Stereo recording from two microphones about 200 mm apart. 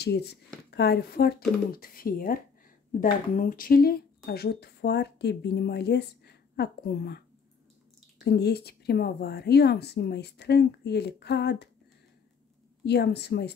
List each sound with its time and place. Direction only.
0.0 s speech: 55° left (ahead or behind)
12.8 s speech: 55° left (ahead or behind)